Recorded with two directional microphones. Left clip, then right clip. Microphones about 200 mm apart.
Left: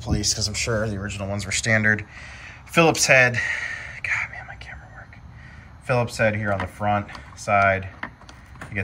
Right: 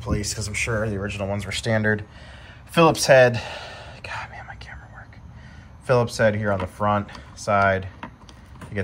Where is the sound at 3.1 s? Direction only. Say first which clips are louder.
Right 2 dB; 20° left (ahead or behind).